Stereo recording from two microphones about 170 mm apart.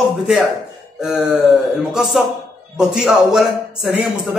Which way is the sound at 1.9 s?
Centre (ahead or behind).